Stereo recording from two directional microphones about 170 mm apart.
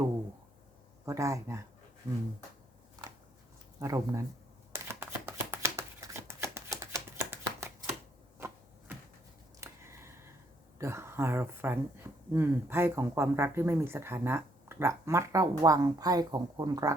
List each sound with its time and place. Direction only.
1.0 s speech: 20° right (ahead or behind)
3.8 s speech: 15° right (ahead or behind)
4.7 s shuffling cards: 15° right (ahead or behind)
8.4 s a sound: 15° right (ahead or behind)
10.8 s speech: 15° right (ahead or behind)